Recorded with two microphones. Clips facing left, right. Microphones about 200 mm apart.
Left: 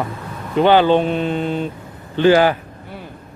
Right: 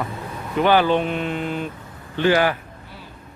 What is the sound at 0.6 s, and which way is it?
Speech, 25° left (ahead or behind).